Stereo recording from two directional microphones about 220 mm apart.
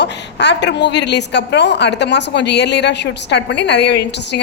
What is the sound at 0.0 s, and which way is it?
A woman's voice, 50° left (ahead or behind).